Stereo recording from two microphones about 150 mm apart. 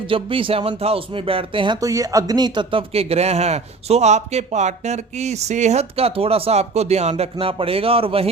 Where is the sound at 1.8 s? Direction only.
20° right (ahead or behind).